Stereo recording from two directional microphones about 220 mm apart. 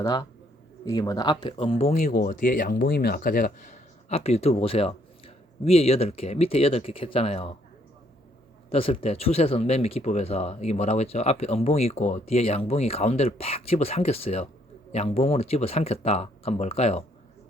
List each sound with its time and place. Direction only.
0.0 s a man's voice: 15° left (ahead or behind)
8.7 s speech: 25° left (ahead or behind)